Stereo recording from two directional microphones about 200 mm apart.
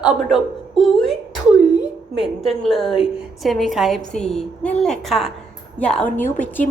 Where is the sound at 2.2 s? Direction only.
Centre (ahead or behind).